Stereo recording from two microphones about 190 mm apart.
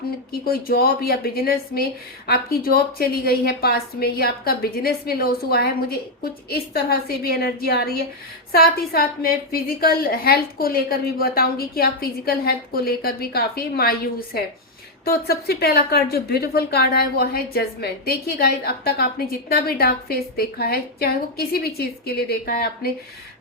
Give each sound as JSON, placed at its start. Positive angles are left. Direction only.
{"t": 0.4, "sound": "a woman's voice", "side_deg": 50}